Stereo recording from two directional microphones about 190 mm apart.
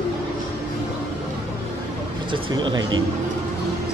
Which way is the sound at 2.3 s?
25° right (ahead or behind).